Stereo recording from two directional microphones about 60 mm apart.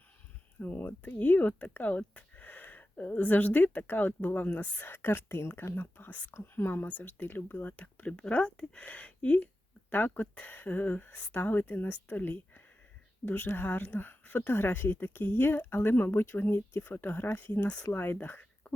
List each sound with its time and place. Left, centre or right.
0.6 s speech: left
6.3 s a woman's voice: left; by 9.5 s centre
9.9 s a woman's voice: left